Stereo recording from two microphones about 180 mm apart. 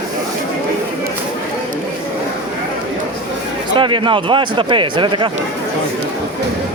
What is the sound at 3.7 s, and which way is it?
Speech, 25° right (ahead or behind).